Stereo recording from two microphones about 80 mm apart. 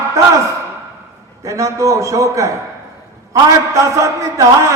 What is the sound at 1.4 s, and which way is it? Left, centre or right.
A man's voice, right.